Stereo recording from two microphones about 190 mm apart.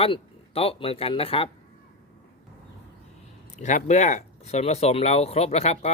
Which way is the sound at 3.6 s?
40° left (ahead or behind).